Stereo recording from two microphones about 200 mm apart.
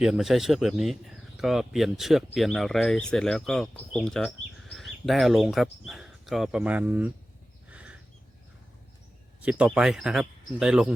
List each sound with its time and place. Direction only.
0.0 s speech: centre (ahead or behind)
7.7 s a sound: 5° right (ahead or behind)
9.4 s speech: 5° right (ahead or behind)